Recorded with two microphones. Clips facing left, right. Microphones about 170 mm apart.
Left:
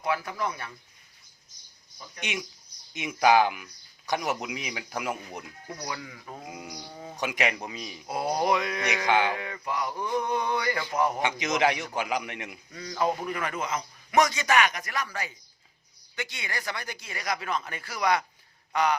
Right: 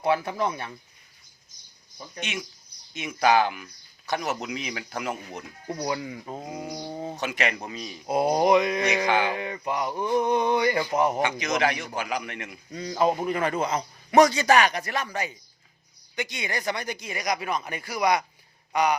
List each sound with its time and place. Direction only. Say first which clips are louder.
0.0 s a man's voice: right 5 dB; 25° right (ahead or behind)
2.9 s speech: even; 15° left (ahead or behind)
5.6 s speech: right 9 dB; 30° right (ahead or behind)
7.2 s speech: left 2 dB; 10° left (ahead or behind)
8.0 s a man's voice: right 6 dB; 20° right (ahead or behind)
11.2 s a man's voice: right 1 dB; 20° left (ahead or behind)
12.7 s a man's voice: right 4 dB; 25° right (ahead or behind)